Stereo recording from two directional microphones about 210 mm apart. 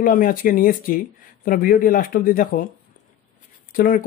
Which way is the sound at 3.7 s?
40° left (ahead or behind).